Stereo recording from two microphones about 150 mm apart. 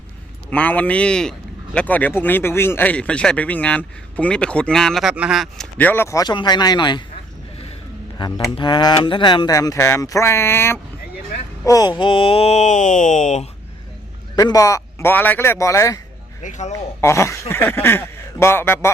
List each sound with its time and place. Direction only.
0.5 s speech: 10° left (ahead or behind)
5.7 s speech: 10° left (ahead or behind); by 7.0 s 30° left (ahead or behind)
8.2 s speech: 30° left (ahead or behind); by 13.5 s 50° left (ahead or behind)
14.3 s speech: 25° left (ahead or behind)
16.4 s speech: 55° left (ahead or behind)
17.0 s speech: 20° left (ahead or behind)